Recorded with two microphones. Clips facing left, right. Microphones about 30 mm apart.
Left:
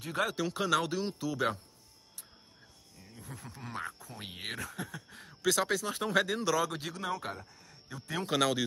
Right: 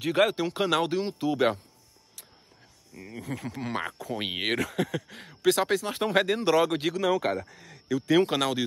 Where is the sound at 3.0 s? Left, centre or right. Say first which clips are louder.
Right 13 dB; right.